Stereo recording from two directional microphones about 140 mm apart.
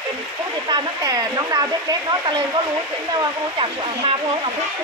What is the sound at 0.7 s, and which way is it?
Speech, 25° right (ahead or behind).